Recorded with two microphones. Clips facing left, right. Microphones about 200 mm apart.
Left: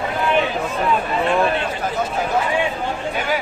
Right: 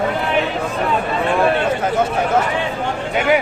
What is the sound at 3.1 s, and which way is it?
Chatter, 70° right (ahead or behind).